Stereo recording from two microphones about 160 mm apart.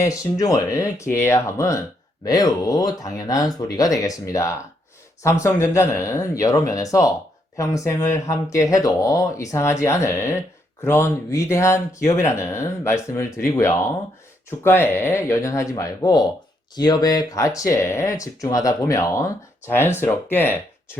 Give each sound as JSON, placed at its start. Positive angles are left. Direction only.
{"t": 0.0, "sound": "speech", "side_deg": 20}